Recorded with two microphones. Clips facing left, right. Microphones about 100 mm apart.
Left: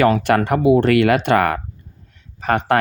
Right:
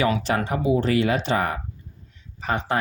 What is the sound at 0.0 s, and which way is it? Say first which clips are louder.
Speech: left 7 dB; 60° left (ahead or behind).